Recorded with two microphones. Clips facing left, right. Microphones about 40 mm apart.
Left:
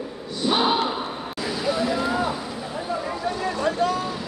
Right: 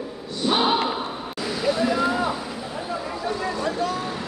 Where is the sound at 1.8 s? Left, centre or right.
Centre.